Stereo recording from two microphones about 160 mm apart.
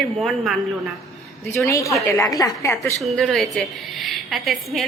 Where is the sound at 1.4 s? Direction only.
15° left (ahead or behind).